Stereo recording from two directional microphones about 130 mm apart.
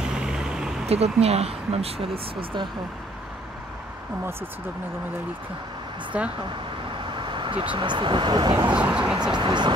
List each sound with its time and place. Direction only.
0.1 s vehicle: 5° right (ahead or behind)
0.8 s speech: 50° right (ahead or behind)
6.1 s speech: 10° right (ahead or behind)
7.2 s speech: 40° right (ahead or behind)
8.7 s speech: 10° right (ahead or behind)
9.3 s speech: 35° right (ahead or behind)